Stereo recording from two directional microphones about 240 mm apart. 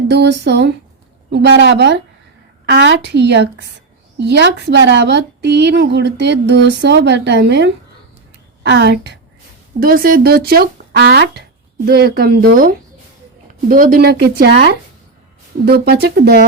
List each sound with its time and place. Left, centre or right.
0.1 s a woman's voice: right